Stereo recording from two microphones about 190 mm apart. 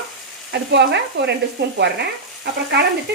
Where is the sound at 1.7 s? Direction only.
60° right (ahead or behind).